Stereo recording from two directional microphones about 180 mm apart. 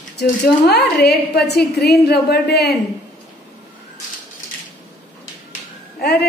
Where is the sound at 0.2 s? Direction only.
65° left (ahead or behind).